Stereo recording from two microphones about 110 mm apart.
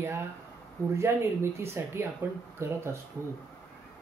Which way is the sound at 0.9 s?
25° right (ahead or behind).